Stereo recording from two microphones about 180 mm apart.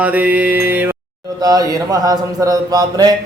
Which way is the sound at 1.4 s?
20° right (ahead or behind).